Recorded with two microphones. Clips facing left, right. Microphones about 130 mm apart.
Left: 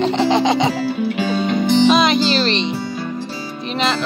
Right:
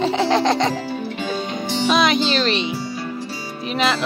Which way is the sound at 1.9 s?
Centre (ahead or behind).